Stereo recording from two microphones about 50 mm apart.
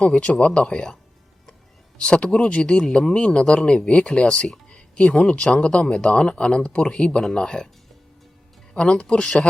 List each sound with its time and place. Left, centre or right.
0.0 s speech: left
2.0 s speech: centre
8.7 s speech: centre